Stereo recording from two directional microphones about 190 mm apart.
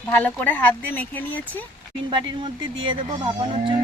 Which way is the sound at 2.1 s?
25° right (ahead or behind).